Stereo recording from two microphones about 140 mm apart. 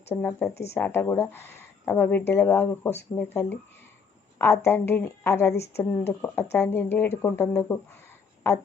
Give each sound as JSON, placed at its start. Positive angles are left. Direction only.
{"t": 0.1, "sound": "a woman's voice", "side_deg": 15}